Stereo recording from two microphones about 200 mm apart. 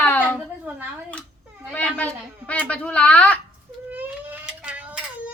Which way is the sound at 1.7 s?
5° left (ahead or behind).